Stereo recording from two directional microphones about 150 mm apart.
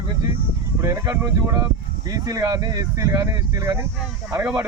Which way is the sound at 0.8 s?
20° right (ahead or behind).